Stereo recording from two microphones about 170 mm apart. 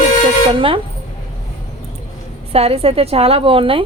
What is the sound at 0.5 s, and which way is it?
Speech, 30° right (ahead or behind).